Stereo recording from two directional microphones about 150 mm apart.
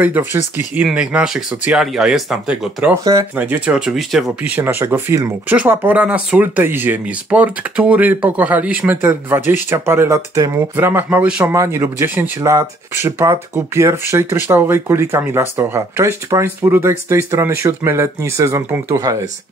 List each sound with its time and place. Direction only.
0.0 s speech: 15° right (ahead or behind)
3.0 s speech: 25° right (ahead or behind)
3.3 s speech: 10° right (ahead or behind)